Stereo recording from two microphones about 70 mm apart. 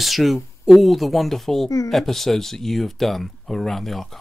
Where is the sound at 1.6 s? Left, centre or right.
Left.